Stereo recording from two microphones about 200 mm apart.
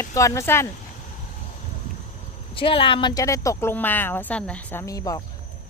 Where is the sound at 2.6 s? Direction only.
25° left (ahead or behind).